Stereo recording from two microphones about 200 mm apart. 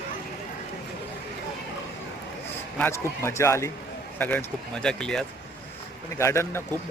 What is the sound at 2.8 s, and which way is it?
Speech, 15° left (ahead or behind).